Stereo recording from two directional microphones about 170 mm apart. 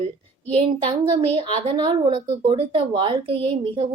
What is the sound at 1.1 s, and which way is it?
A woman's voice, 35° right (ahead or behind).